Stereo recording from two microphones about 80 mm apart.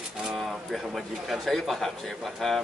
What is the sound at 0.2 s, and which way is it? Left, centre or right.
Speech, centre.